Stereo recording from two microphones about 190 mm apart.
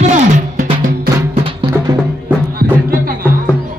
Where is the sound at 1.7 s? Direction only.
15° right (ahead or behind).